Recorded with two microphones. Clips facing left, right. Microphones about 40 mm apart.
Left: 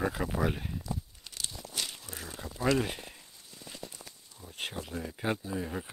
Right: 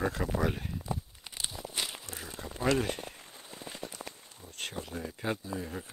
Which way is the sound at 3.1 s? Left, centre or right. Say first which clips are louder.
Right 5 dB; right.